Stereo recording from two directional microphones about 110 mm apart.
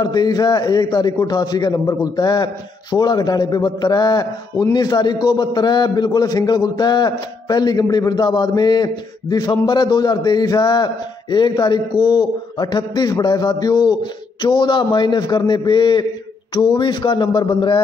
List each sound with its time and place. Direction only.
0.0 s a man's voice: 40° left (ahead or behind)